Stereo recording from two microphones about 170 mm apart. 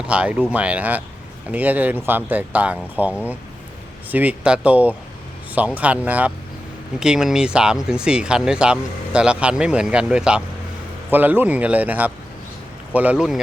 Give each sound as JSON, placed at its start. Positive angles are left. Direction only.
{"t": 0.0, "sound": "speech", "side_deg": -5}